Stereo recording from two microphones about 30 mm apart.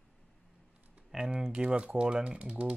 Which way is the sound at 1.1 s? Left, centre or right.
Right.